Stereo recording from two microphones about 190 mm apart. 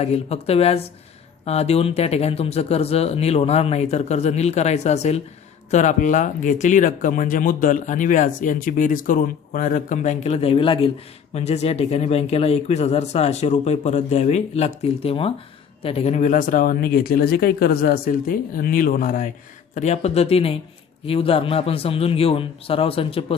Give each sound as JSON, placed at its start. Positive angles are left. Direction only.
{"t": 0.0, "sound": "a man's voice", "side_deg": 35}